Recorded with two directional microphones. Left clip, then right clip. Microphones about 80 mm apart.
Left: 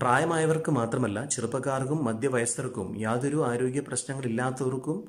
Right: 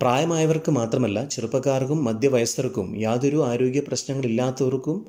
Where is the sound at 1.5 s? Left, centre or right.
Centre.